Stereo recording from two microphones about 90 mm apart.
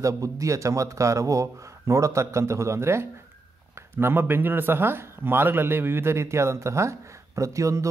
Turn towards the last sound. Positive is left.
turn(degrees=-35)  # may be behind; listen again after turning